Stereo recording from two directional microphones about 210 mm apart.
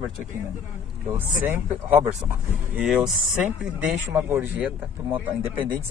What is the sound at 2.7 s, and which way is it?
Speech, 5° right (ahead or behind).